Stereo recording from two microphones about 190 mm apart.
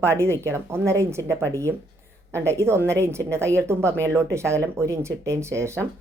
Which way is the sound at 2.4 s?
15° right (ahead or behind).